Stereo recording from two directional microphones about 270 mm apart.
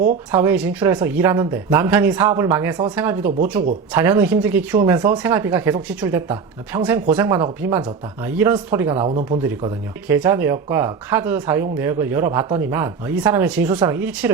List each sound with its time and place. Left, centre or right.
0.3 s speech: centre
9.0 s speech: right